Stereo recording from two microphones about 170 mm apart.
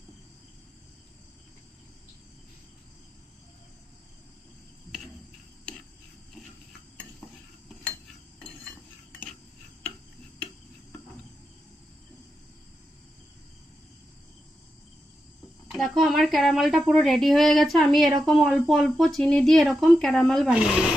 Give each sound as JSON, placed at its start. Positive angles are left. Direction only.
{"t": 7.2, "sound": "cutlery", "side_deg": 5}
{"t": 15.7, "sound": "speech", "side_deg": 0}